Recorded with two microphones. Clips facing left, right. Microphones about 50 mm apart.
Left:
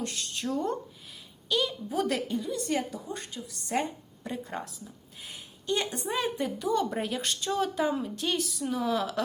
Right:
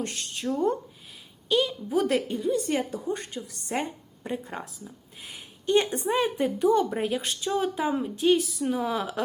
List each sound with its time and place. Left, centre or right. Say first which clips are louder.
0.0 s speech: right 2 dB; right
1.5 s speech: right 4 dB; centre
2.0 s a woman's voice: right 4 dB; right
5.2 s a woman's voice: right 7 dB; right
6.9 s speech: right 3 dB; centre